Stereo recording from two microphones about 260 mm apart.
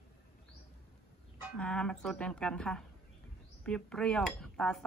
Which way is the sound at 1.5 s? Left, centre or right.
Centre.